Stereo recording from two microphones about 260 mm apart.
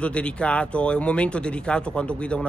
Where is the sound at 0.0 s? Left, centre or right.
Centre.